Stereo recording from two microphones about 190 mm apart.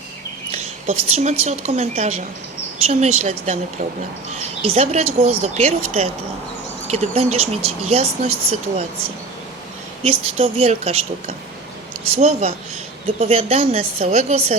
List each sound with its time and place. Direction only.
0.5 s a woman's voice: 35° right (ahead or behind)
4.6 s speech: 30° right (ahead or behind)
6.8 s speech: 35° right (ahead or behind)
10.0 s speech: 30° right (ahead or behind)